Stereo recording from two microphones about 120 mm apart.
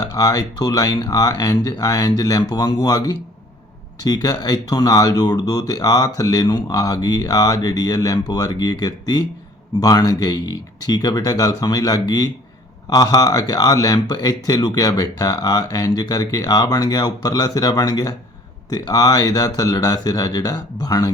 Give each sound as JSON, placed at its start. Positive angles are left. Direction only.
{"t": 0.0, "sound": "speech", "side_deg": 30}